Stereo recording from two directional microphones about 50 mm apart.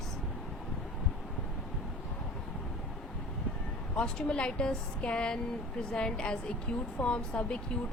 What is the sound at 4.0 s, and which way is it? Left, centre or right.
A woman's voice, centre.